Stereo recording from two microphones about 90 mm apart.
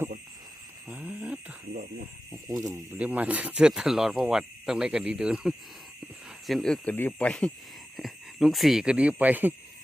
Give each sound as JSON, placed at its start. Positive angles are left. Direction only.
{"t": 0.9, "sound": "a sound", "side_deg": -15}
{"t": 2.5, "sound": "speech", "side_deg": -40}
{"t": 3.0, "sound": "speech", "side_deg": -15}
{"t": 6.5, "sound": "speech", "side_deg": 5}
{"t": 6.8, "sound": "speech", "side_deg": 20}
{"t": 7.9, "sound": "speech", "side_deg": 0}